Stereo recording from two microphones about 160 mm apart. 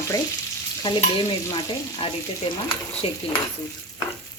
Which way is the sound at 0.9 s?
30° left (ahead or behind).